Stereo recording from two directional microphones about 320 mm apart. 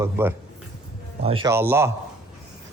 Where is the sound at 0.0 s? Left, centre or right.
Centre.